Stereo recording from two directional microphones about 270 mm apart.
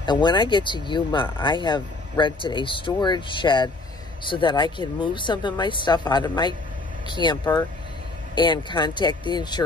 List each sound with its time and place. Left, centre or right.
0.0 s speech: centre